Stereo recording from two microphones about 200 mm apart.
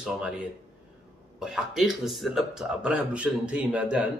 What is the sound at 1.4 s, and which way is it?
A man's voice, centre (ahead or behind).